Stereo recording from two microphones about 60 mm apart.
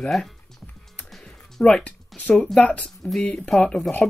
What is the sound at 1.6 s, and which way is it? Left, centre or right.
Speech, centre.